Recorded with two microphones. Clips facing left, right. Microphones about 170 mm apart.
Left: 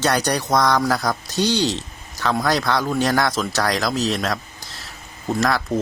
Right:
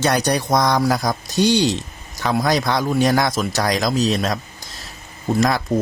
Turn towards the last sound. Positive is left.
turn(degrees=-15)  # may be behind; listen again after turning